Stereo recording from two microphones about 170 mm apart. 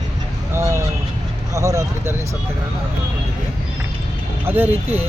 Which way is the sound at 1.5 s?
20° right (ahead or behind).